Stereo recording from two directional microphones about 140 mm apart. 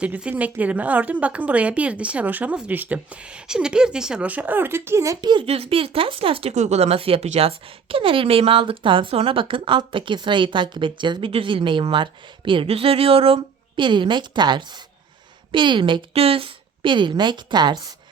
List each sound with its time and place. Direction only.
0.0 s a woman's voice: 10° right (ahead or behind)
5.2 s speech: 30° right (ahead or behind)
5.5 s speech: 45° right (ahead or behind)
6.5 s speech: 55° right (ahead or behind); by 17.9 s 30° right (ahead or behind)